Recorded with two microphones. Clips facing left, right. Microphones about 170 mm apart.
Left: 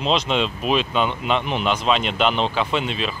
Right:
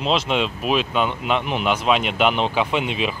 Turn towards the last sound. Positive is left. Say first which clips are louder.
# right 1 dB
turn(degrees=-15)  # may be behind; listen again after turning